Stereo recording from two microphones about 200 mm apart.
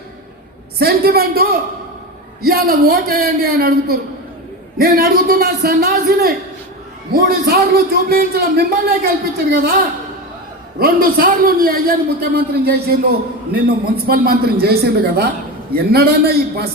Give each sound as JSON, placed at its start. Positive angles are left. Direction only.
{"t": 0.8, "sound": "a man's voice", "side_deg": -50}
{"t": 10.8, "sound": "a man's voice", "side_deg": -50}